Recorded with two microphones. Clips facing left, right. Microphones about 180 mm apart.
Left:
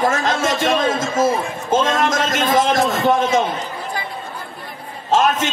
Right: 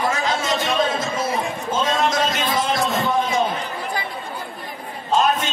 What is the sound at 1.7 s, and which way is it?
A man's voice, 50° left (ahead or behind).